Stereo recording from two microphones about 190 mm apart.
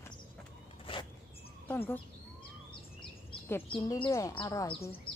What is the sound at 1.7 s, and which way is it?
Speech, 10° left (ahead or behind).